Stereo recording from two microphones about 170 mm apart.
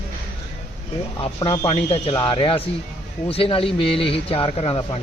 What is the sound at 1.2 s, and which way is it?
Speech, 30° left (ahead or behind).